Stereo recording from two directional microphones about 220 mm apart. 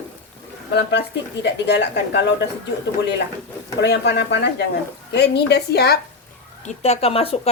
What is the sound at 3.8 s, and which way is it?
Speech, 50° left (ahead or behind).